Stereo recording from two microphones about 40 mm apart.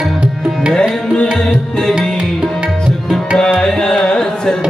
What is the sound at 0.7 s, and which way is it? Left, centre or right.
Tabla, left.